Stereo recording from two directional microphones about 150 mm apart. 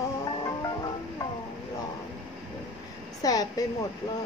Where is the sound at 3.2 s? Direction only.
25° left (ahead or behind).